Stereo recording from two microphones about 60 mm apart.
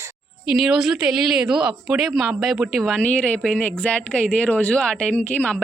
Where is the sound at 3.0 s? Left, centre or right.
Left.